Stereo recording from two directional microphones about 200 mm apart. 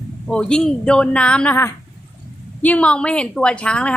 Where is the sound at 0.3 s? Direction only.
5° left (ahead or behind).